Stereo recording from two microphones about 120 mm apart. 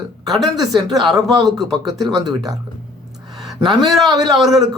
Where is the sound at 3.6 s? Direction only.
40° right (ahead or behind).